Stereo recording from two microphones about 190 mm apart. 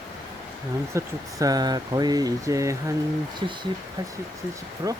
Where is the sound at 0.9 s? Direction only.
20° right (ahead or behind).